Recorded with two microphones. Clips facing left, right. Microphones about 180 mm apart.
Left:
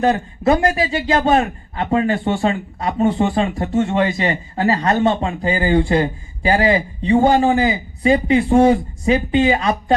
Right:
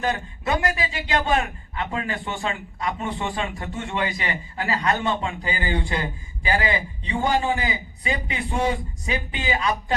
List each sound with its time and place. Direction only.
0.0 s a man's voice: 35° left (ahead or behind)